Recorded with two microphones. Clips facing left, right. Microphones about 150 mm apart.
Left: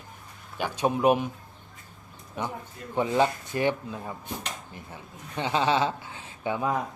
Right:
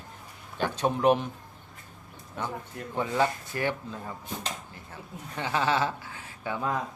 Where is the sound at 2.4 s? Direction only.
15° left (ahead or behind).